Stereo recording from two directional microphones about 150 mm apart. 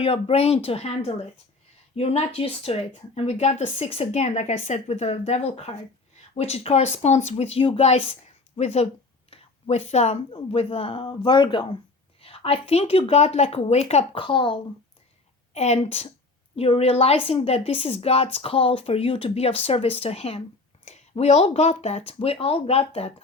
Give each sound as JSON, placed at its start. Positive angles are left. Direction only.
{"t": 0.0, "sound": "speech", "side_deg": 40}
{"t": 15.5, "sound": "speech", "side_deg": 45}